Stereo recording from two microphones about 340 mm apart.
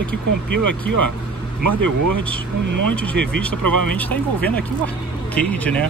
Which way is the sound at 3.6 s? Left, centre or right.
Right.